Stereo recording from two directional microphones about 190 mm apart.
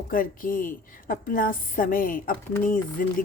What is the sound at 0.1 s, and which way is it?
A woman's voice, 45° left (ahead or behind).